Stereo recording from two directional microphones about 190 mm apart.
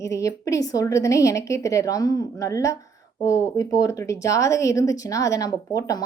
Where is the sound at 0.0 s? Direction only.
15° left (ahead or behind).